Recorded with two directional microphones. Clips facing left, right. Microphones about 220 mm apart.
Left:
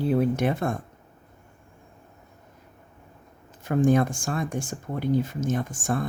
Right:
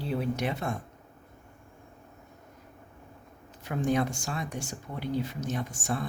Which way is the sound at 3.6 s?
50° left (ahead or behind).